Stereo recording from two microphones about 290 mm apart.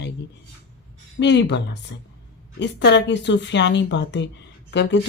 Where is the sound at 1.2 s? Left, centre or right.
Left.